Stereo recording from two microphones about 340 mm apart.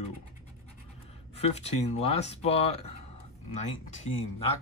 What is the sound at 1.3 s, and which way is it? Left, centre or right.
Speech, centre.